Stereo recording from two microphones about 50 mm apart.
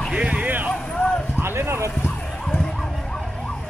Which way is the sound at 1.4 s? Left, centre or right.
Right.